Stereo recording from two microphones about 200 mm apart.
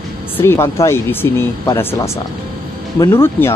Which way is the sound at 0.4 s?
15° left (ahead or behind).